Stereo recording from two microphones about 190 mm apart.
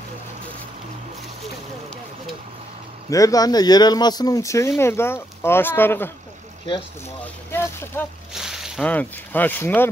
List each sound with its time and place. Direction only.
3.1 s speech: 20° left (ahead or behind)
7.5 s speech: 10° left (ahead or behind)
8.3 s speech: 5° right (ahead or behind)